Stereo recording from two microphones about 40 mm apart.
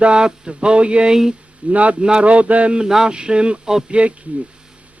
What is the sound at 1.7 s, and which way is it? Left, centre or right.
Mantra, right.